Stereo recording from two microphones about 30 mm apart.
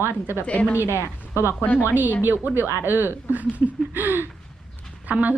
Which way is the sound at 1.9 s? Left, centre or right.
Right.